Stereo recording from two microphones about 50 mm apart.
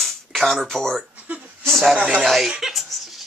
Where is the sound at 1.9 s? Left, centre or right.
Right.